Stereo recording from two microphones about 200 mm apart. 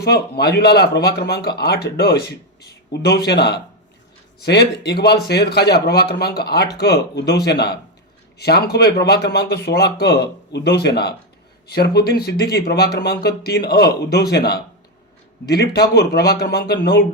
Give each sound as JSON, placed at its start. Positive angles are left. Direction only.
{"t": 0.0, "sound": "a man's voice", "side_deg": 55}